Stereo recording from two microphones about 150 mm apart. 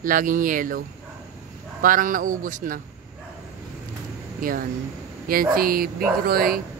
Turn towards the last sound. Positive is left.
turn(degrees=-80)